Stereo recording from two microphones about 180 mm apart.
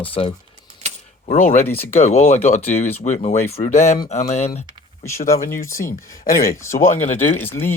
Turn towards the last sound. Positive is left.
turn(degrees=10)  # may be behind; listen again after turning